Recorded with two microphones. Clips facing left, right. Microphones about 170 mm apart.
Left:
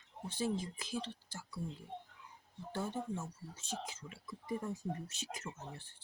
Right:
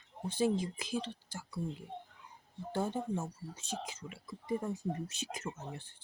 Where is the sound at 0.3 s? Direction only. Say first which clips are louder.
Right 6 dB; 15° right (ahead or behind).